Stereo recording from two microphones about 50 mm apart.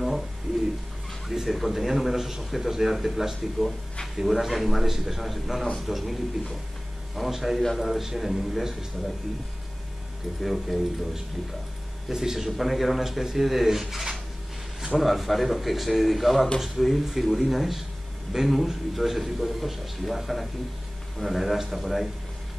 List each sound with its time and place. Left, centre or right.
1.3 s a man's voice: centre
7.2 s a man's voice: centre
10.4 s a man's voice: centre